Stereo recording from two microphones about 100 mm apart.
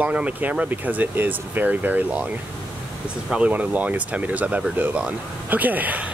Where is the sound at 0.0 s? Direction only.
15° right (ahead or behind).